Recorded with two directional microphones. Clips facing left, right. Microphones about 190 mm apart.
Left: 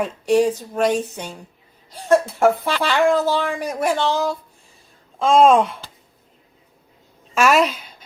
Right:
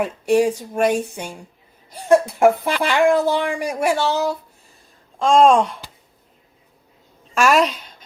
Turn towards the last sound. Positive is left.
turn(degrees=0)  # may be behind; listen again after turning